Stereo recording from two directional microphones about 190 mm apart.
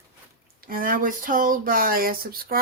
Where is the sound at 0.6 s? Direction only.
50° right (ahead or behind).